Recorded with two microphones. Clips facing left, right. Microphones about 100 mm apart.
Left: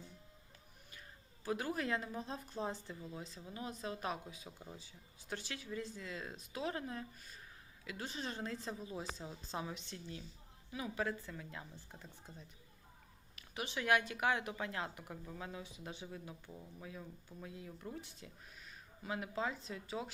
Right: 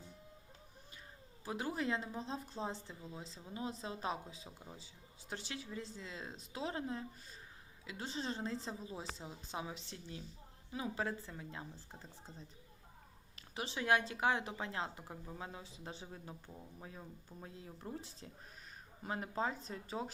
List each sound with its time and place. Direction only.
1.5 s speech: 25° right (ahead or behind); by 20.1 s 40° right (ahead or behind)